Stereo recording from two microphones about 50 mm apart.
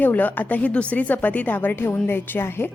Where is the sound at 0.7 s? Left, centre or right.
Left.